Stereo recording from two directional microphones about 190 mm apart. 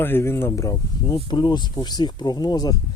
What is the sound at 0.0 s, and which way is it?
Speech, 10° left (ahead or behind).